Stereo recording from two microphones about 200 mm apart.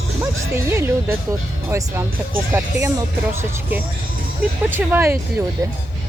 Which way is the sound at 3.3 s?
10° right (ahead or behind).